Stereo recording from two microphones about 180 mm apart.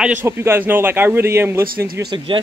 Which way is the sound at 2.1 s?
25° right (ahead or behind).